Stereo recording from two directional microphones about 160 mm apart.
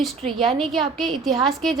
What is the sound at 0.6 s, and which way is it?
A woman's voice, centre (ahead or behind).